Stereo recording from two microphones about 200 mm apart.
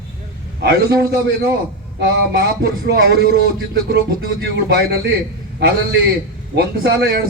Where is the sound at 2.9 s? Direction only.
50° right (ahead or behind).